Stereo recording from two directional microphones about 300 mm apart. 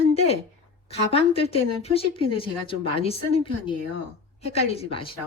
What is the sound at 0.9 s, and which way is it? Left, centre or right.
Speech, centre.